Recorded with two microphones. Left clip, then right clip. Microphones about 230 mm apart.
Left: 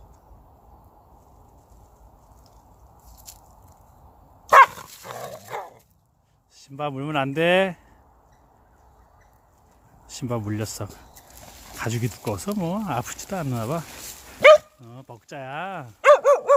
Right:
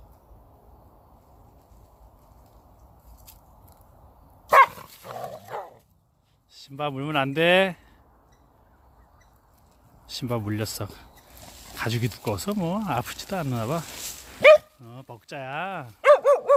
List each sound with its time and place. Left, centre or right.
4.4 s dog: centre
4.8 s dog: centre
6.7 s speech: centre
10.2 s speech: centre
14.4 s dog: centre